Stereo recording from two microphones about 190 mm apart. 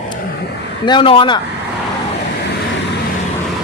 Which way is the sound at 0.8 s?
25° left (ahead or behind).